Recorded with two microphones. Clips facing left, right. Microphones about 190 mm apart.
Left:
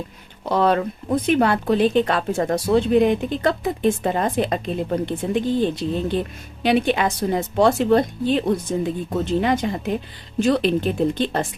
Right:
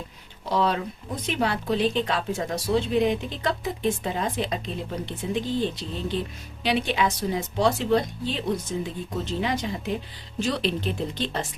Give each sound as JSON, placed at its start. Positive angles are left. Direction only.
{"t": 0.4, "sound": "speech", "side_deg": 55}